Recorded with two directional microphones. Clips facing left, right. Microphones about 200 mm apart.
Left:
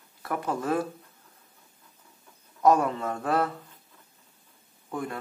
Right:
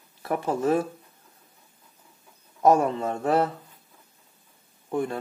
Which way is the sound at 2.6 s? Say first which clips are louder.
Right 2 dB; 25° right (ahead or behind).